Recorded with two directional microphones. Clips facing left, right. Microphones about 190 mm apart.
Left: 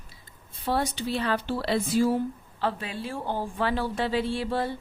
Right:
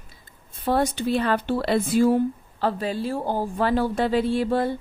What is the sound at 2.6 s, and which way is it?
A woman's voice, 40° right (ahead or behind).